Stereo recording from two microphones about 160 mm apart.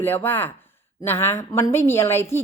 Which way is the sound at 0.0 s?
10° left (ahead or behind).